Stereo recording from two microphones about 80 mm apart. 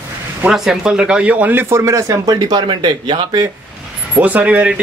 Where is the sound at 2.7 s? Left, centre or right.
Right.